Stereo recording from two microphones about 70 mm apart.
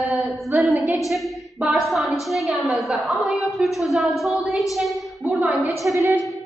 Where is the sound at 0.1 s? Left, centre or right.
Centre.